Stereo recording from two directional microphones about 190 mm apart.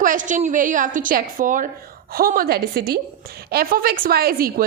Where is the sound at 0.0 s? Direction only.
45° right (ahead or behind).